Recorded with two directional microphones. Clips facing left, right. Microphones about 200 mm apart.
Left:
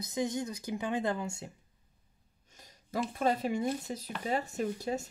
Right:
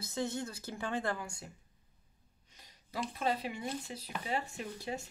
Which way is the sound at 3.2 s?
45° left (ahead or behind).